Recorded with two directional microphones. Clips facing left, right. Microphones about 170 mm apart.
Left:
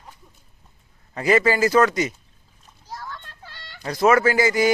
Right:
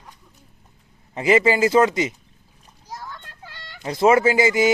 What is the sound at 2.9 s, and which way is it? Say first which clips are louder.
Children playing: even; 15° right (ahead or behind).